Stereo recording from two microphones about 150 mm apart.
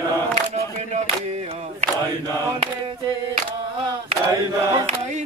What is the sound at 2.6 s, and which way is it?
Speech, 40° right (ahead or behind).